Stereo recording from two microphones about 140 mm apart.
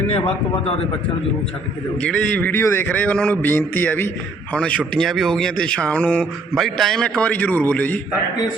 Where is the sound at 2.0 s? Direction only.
10° left (ahead or behind).